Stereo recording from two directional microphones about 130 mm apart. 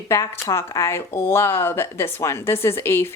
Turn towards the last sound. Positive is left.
turn(degrees=20)  # may be behind; listen again after turning